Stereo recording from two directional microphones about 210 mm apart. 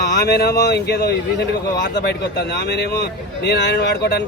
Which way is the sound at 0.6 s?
50° left (ahead or behind).